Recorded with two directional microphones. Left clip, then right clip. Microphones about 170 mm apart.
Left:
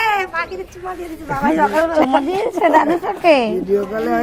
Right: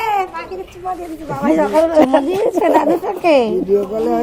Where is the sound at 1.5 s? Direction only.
80° right.